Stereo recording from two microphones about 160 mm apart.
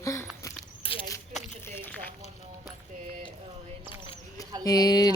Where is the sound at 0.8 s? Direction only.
35° left (ahead or behind).